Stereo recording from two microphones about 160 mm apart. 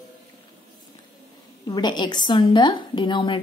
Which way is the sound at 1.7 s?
25° left (ahead or behind).